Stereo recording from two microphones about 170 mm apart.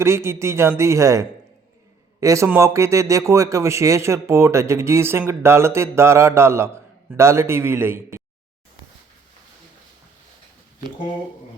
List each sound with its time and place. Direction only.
0.0 s speech: 15° right (ahead or behind)